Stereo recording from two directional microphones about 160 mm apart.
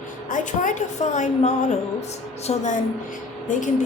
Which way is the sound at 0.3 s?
55° left (ahead or behind).